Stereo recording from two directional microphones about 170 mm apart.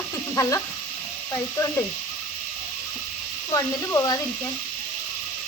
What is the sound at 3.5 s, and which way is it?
Speech, 15° left (ahead or behind).